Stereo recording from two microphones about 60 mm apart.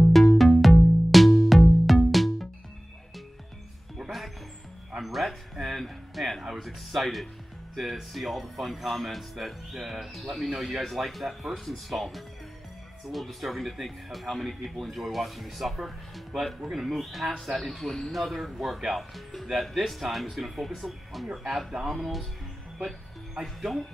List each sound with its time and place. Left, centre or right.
0.6 s music: centre
4.0 s music: centre
4.9 s a sound: centre
7.7 s speech: centre